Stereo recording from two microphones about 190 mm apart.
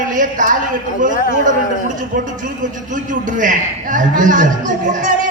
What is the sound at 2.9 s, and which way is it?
A man's voice, 40° right (ahead or behind).